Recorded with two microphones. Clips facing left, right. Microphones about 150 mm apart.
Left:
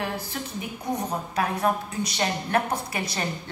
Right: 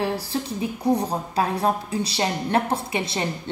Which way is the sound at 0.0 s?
35° right (ahead or behind).